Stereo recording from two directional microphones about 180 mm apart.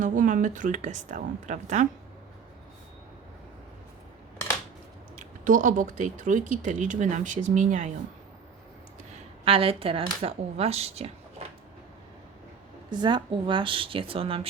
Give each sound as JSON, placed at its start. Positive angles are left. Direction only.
{"t": 0.0, "sound": "speech", "side_deg": -45}
{"t": 5.1, "sound": "speech", "side_deg": -45}
{"t": 9.4, "sound": "speech", "side_deg": -30}
{"t": 12.9, "sound": "speech", "side_deg": -25}